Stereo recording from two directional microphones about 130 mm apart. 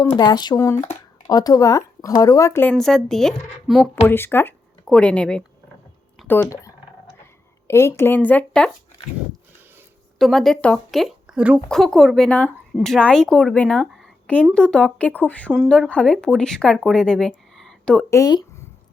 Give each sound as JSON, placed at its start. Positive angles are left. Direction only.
{"t": 0.2, "sound": "speech", "side_deg": 30}
{"t": 2.7, "sound": "speech", "side_deg": 5}
{"t": 4.0, "sound": "speech", "side_deg": 15}
{"t": 6.2, "sound": "speech", "side_deg": 15}
{"t": 10.2, "sound": "speech", "side_deg": 0}
{"t": 11.7, "sound": "a woman's voice", "side_deg": 5}
{"t": 18.1, "sound": "speech", "side_deg": 30}